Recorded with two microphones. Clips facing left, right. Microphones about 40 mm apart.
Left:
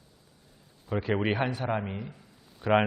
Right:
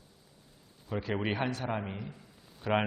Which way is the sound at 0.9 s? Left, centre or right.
Centre.